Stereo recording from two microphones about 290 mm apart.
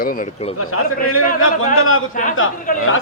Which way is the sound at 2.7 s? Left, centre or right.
Left.